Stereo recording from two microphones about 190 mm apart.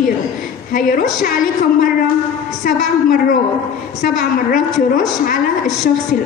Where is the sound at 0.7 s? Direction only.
45° left (ahead or behind).